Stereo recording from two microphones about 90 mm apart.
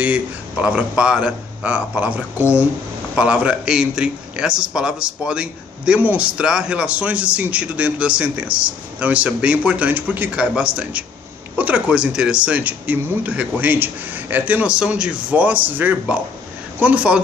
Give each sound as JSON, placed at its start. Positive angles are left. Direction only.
{"t": 0.0, "sound": "a man's voice", "side_deg": -15}